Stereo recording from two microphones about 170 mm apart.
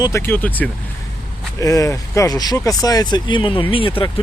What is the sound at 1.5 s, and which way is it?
Speech, 20° left (ahead or behind).